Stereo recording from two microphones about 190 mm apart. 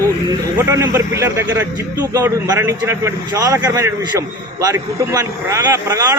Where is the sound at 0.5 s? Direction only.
15° right (ahead or behind).